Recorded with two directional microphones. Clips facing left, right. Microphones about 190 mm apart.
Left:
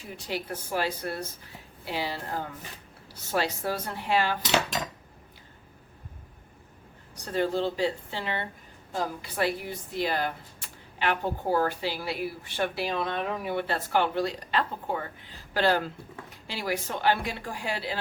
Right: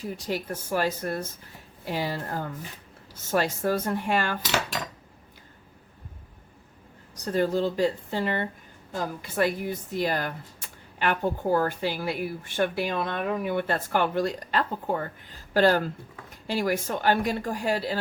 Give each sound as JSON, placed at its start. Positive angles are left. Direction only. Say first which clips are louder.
{"t": 0.0, "sound": "speech", "louder": "right 4 dB", "side_deg": -45}
{"t": 7.3, "sound": "speech", "louder": "right 3 dB", "side_deg": -40}